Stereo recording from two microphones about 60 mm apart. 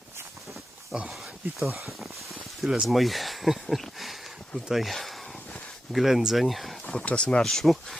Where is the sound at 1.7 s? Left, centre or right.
Right.